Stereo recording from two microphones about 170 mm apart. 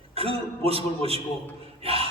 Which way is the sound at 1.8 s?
35° right (ahead or behind).